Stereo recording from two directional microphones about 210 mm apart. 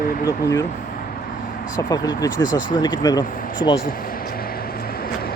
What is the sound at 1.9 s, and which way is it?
Speech, 20° left (ahead or behind).